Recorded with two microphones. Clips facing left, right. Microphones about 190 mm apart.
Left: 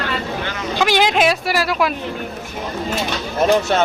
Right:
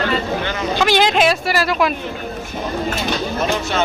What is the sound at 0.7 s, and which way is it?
Speech, 10° left (ahead or behind).